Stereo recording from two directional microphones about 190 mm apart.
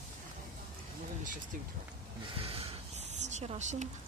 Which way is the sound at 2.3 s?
30° right (ahead or behind).